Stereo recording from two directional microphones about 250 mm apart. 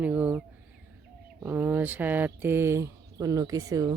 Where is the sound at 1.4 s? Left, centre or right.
Centre.